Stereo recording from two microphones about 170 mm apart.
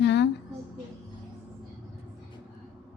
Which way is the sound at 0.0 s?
90° left.